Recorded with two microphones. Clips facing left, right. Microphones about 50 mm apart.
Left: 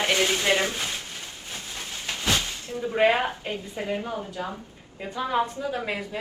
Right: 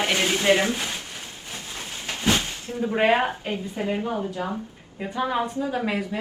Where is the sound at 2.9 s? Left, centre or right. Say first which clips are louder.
Right 1 dB; right.